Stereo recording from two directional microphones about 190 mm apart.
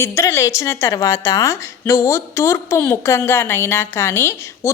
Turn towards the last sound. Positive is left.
turn(degrees=15)  # may be behind; listen again after turning